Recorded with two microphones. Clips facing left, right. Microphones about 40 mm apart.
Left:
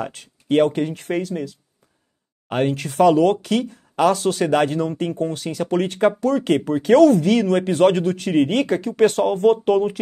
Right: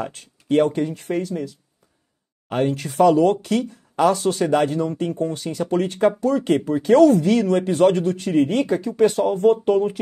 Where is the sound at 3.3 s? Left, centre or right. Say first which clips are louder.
Left 1 dB; centre.